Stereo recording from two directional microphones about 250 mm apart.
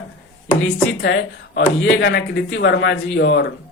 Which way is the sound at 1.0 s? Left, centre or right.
Left.